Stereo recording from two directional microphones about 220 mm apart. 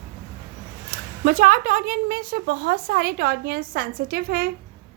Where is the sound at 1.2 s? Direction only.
40° right (ahead or behind).